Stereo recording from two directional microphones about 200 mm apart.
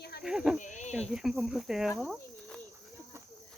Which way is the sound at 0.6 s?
35° left (ahead or behind).